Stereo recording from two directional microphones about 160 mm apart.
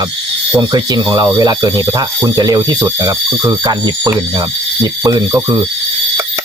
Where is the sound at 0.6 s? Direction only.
25° right (ahead or behind).